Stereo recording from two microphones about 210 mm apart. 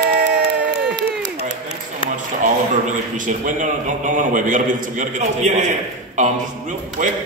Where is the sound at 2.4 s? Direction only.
40° right (ahead or behind).